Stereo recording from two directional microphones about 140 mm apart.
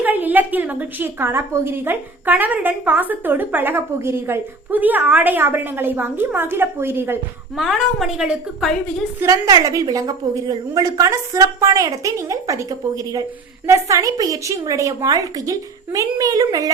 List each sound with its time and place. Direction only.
0.0 s a woman's voice: 10° right (ahead or behind)
7.5 s a woman's voice: centre (ahead or behind)
9.2 s a woman's voice: 25° right (ahead or behind)